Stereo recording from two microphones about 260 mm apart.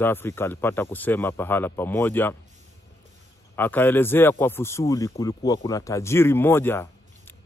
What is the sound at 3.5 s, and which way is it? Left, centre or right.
Speech, centre.